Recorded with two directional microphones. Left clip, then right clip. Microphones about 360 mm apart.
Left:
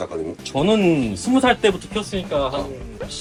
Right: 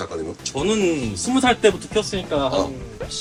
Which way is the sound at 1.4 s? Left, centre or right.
Centre.